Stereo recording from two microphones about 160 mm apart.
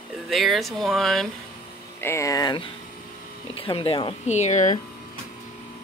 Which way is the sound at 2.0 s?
20° left (ahead or behind).